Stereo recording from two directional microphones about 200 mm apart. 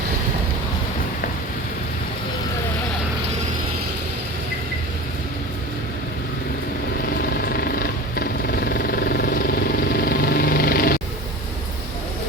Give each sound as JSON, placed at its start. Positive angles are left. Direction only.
{"t": 7.4, "sound": "vehicle", "side_deg": 50}
{"t": 10.0, "sound": "music", "side_deg": 50}